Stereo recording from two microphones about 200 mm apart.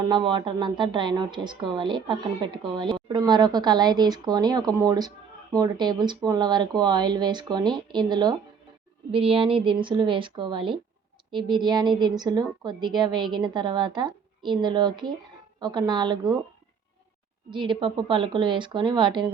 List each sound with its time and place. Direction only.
0.1 s a woman's voice: 25° right (ahead or behind)
17.5 s a woman's voice: 25° right (ahead or behind)